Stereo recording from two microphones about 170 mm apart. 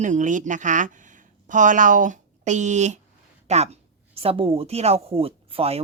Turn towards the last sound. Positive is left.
turn(degrees=-35)  # may be behind; listen again after turning